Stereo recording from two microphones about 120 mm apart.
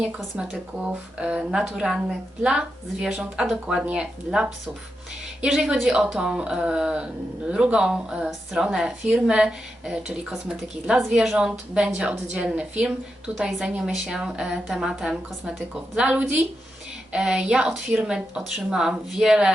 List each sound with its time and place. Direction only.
0.0 s a woman's voice: 10° right (ahead or behind)